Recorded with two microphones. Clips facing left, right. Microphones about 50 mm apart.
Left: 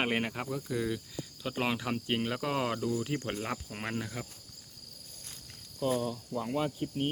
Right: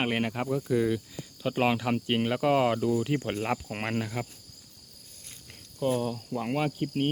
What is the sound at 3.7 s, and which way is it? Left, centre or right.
Cricket, right.